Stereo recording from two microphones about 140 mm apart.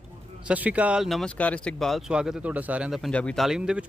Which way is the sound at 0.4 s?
10° right (ahead or behind).